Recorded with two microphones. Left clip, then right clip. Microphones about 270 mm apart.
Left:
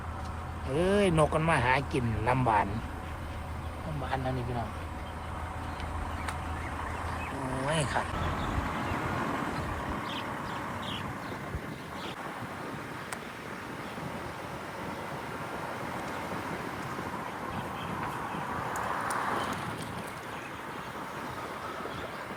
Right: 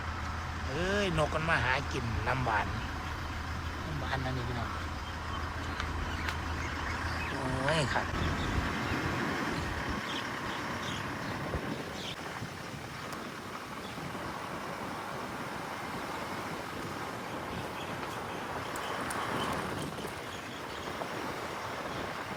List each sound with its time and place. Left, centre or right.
0.8 s speech: left
7.7 s speech: centre